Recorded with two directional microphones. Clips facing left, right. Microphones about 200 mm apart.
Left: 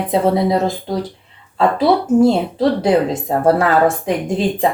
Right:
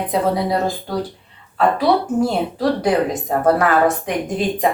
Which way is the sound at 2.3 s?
25° left (ahead or behind).